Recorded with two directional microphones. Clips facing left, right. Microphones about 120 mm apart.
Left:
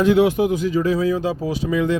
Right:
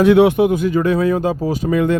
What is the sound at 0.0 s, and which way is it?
Speech, 65° right (ahead or behind).